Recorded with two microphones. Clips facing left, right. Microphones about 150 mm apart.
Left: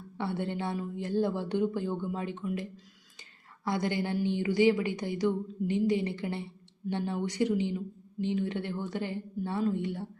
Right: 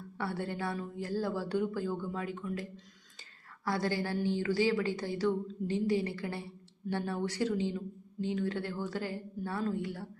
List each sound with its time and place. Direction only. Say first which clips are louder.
0.2 s speech: left 3 dB; 20° left (ahead or behind)